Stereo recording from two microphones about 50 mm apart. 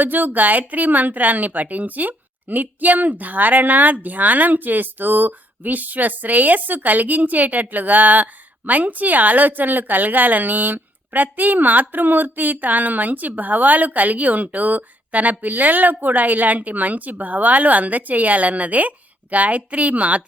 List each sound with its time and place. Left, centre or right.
0.0 s a woman's voice: right